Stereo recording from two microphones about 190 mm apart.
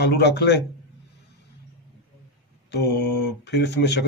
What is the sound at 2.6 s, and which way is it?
Speech, 60° left (ahead or behind).